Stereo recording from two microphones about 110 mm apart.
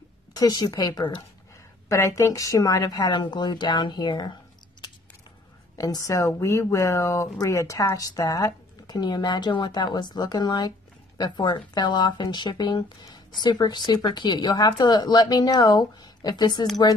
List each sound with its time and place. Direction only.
0.3 s speech: 35° left (ahead or behind)
5.8 s speech: 30° left (ahead or behind)